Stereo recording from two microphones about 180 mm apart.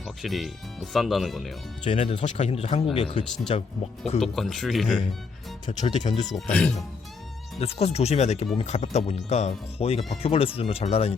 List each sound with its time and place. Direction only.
0.2 s speech: centre (ahead or behind)
1.8 s speech: 35° left (ahead or behind)
4.2 s speech: centre (ahead or behind)
5.6 s speech: 40° left (ahead or behind)
6.3 s speech: 5° left (ahead or behind)
7.6 s speech: 35° left (ahead or behind)